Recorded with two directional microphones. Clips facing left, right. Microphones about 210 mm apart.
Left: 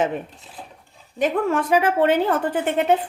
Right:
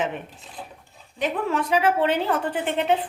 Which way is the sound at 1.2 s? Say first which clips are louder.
Left 4 dB; 50° left (ahead or behind).